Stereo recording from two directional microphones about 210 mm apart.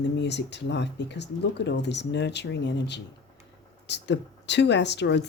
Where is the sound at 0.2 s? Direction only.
55° left (ahead or behind).